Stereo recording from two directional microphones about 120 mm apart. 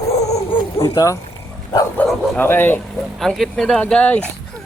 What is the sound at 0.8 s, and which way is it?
Speech, 30° left (ahead or behind).